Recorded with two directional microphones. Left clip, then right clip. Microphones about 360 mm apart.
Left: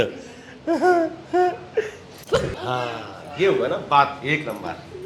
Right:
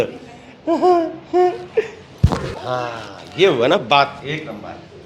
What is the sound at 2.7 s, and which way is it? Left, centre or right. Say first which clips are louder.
Speech: right 3 dB; centre.